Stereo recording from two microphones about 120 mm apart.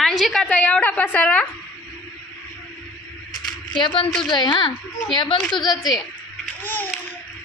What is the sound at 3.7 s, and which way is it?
A child's voice, 45° left (ahead or behind).